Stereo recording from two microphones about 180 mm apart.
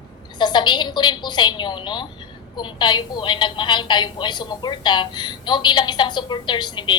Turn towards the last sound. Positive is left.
turn(degrees=25)  # may be behind; listen again after turning